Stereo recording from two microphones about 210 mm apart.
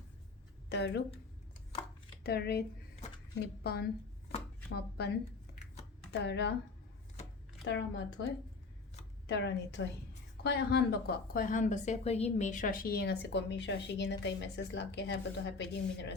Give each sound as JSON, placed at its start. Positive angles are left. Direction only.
{"t": 0.7, "sound": "a woman's voice", "side_deg": 55}
{"t": 2.2, "sound": "a woman's voice", "side_deg": 50}
{"t": 6.1, "sound": "speech", "side_deg": 55}
{"t": 7.6, "sound": "a woman's voice", "side_deg": 55}